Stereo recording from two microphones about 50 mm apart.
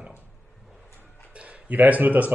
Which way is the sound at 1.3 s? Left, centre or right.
Right.